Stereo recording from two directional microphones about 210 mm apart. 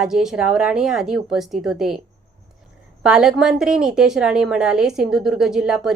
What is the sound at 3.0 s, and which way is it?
A woman's voice, 5° right (ahead or behind).